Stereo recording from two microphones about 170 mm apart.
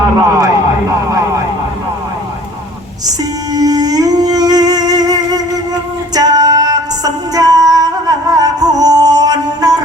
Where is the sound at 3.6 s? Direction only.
20° right (ahead or behind).